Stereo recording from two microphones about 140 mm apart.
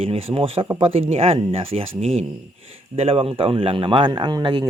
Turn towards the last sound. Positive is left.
turn(degrees=-30)  # may be behind; listen again after turning